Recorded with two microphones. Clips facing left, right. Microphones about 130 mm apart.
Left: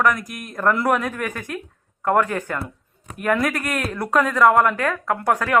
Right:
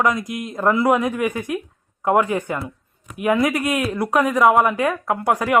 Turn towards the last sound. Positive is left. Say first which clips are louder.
# right 1 dB
turn(degrees=-15)  # may be behind; listen again after turning